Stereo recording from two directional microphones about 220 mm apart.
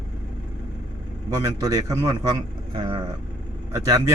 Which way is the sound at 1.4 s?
15° right (ahead or behind).